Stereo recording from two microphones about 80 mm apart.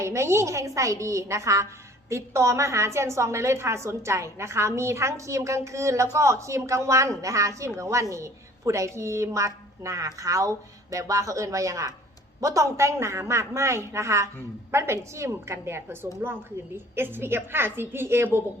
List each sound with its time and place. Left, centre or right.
0.0 s a woman's voice: right